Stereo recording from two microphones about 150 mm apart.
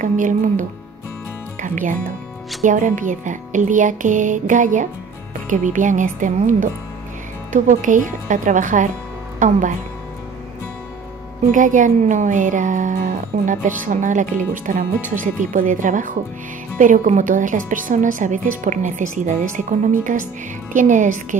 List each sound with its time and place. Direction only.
0.0 s speech: 60° right (ahead or behind)
11.5 s speech: 60° right (ahead or behind)